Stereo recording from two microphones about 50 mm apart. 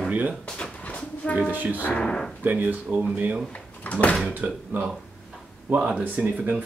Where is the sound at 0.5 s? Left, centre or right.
Left.